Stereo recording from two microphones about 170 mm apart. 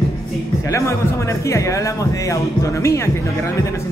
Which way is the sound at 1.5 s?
20° left (ahead or behind).